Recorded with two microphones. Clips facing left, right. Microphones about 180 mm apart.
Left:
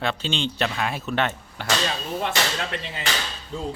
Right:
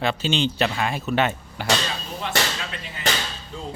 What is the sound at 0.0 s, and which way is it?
Speech, 5° right (ahead or behind).